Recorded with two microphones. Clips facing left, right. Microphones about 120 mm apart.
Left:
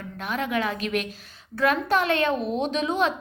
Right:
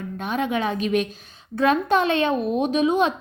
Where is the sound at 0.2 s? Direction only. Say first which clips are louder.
Right 2 dB; 20° right (ahead or behind).